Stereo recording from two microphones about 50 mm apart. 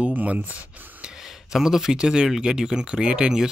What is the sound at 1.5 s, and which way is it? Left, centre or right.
Speech, centre.